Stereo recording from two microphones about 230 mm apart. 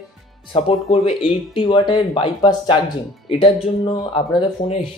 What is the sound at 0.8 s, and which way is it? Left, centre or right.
Speech, left.